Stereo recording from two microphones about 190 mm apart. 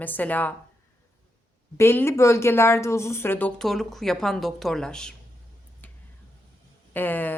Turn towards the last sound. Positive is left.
turn(degrees=10)  # may be behind; listen again after turning